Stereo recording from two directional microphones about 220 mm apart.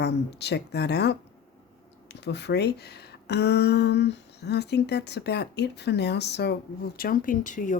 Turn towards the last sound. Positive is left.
turn(degrees=35)  # may be behind; listen again after turning